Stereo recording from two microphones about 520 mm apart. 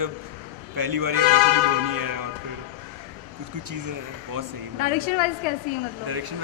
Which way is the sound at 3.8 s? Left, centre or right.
Right.